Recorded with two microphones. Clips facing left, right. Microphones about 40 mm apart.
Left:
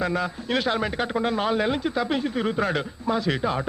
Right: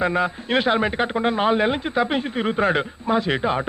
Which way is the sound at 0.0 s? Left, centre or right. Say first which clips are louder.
Right 4 dB; right.